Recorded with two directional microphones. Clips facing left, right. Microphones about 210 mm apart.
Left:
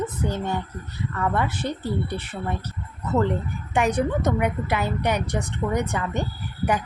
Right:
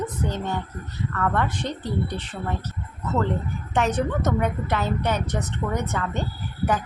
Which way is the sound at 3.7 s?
10° left (ahead or behind).